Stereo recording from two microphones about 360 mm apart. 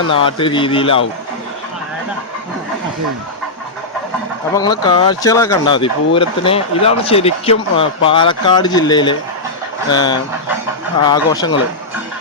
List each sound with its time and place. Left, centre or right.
0.1 s speech: centre
4.5 s speech: centre